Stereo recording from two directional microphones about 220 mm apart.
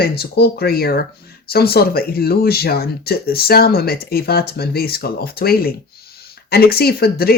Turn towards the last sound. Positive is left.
turn(degrees=45)  # may be behind; listen again after turning